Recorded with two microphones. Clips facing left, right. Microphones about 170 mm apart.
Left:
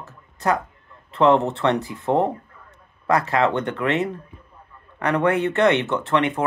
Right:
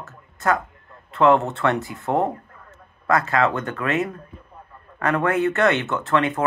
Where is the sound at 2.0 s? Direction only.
20° left (ahead or behind).